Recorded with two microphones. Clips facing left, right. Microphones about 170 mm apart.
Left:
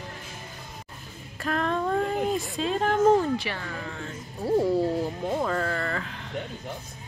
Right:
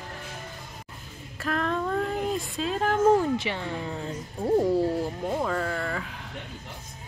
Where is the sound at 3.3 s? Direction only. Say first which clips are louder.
Right 2 dB; 20° right (ahead or behind).